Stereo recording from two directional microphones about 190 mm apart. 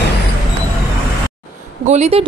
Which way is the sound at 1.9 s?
35° right (ahead or behind).